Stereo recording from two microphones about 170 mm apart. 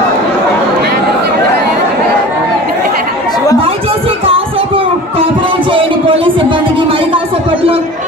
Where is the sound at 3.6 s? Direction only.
35° right (ahead or behind).